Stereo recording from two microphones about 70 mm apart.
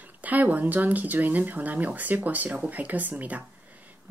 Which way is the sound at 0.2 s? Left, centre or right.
Right.